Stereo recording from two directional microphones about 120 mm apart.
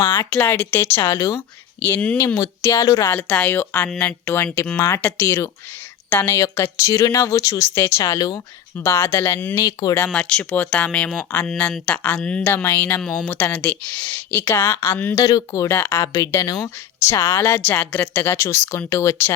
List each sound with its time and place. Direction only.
0.3 s speech: 15° left (ahead or behind)
2.1 s speech: 25° left (ahead or behind)
3.2 s speech: 10° left (ahead or behind); by 8.4 s 30° left (ahead or behind)
8.8 s speech: 20° left (ahead or behind)
9.6 s speech: 30° left (ahead or behind)
10.1 s speech: 5° left (ahead or behind); by 19.3 s 25° left (ahead or behind)